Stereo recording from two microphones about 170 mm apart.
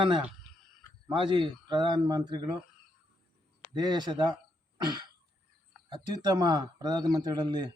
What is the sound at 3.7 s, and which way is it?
Speech, 25° right (ahead or behind).